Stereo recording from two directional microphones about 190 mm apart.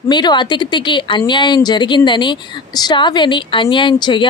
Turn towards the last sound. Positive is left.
turn(degrees=25)  # may be behind; listen again after turning